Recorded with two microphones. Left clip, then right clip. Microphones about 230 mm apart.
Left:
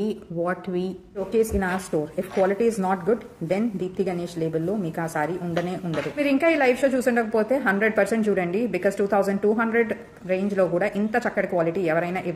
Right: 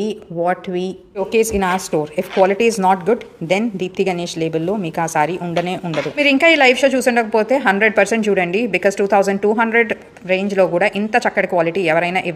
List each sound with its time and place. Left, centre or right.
0.0 s a woman's voice: centre
1.4 s a woman's voice: right